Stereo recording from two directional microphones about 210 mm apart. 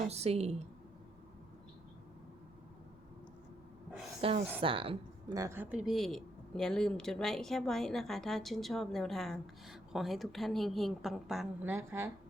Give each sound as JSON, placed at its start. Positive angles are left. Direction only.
{"t": 0.1, "sound": "a woman's voice", "side_deg": -30}
{"t": 4.2, "sound": "a woman's voice", "side_deg": -25}